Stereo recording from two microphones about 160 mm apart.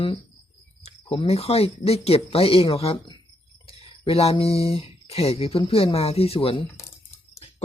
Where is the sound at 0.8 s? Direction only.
40° left (ahead or behind).